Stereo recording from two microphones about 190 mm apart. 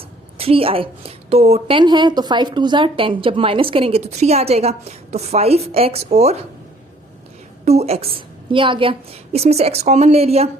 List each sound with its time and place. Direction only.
0.3 s a woman's voice: 30° right (ahead or behind)
7.6 s a woman's voice: 35° right (ahead or behind)